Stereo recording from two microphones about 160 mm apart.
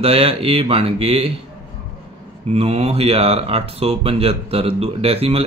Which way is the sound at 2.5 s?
40° right (ahead or behind).